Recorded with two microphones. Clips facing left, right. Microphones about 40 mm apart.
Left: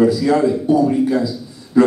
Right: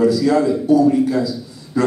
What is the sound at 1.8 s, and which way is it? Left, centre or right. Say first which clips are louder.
Speech: left 4 dB; left.